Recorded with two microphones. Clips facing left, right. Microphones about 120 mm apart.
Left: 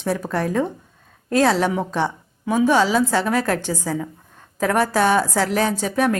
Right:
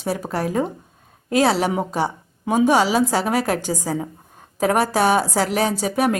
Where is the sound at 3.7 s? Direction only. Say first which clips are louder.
Right 1 dB; 35° right (ahead or behind).